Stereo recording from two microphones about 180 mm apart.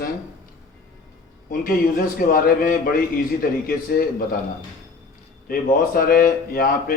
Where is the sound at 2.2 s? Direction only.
55° left (ahead or behind).